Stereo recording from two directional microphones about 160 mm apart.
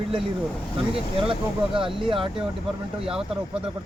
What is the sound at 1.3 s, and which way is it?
Speech, 30° right (ahead or behind).